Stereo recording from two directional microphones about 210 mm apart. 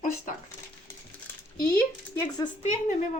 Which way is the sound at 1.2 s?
10° left (ahead or behind).